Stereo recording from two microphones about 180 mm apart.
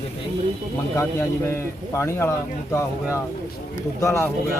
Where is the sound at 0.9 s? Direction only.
15° left (ahead or behind).